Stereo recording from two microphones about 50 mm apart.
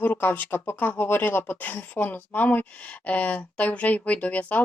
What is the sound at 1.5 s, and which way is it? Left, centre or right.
Speech, left.